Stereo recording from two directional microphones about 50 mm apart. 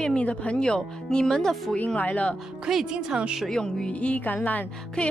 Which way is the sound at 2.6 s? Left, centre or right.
Centre.